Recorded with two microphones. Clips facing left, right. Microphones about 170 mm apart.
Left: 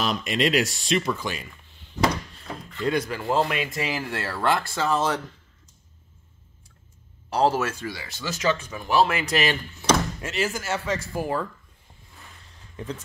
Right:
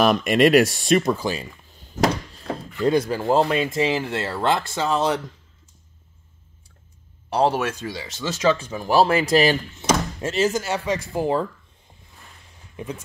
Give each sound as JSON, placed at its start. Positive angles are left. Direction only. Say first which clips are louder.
{"t": 0.0, "sound": "speech", "louder": "right 8 dB", "side_deg": -55}
{"t": 7.4, "sound": "speech", "louder": "even", "side_deg": -15}
{"t": 12.7, "sound": "speech", "louder": "right 2 dB", "side_deg": -10}